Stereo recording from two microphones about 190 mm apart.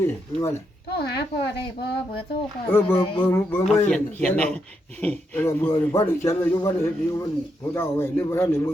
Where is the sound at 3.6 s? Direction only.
5° left (ahead or behind).